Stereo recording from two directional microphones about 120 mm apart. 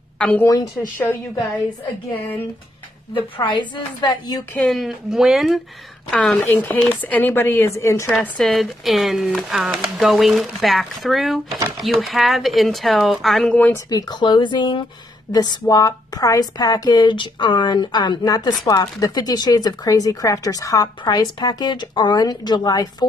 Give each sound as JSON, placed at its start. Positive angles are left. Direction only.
{"t": 0.2, "sound": "a woman's voice", "side_deg": 10}
{"t": 3.2, "sound": "a woman's voice", "side_deg": 45}
{"t": 4.6, "sound": "speech", "side_deg": 0}
{"t": 6.4, "sound": "speech", "side_deg": 15}
{"t": 8.4, "sound": "speech", "side_deg": 0}
{"t": 13.8, "sound": "a woman's voice", "side_deg": 35}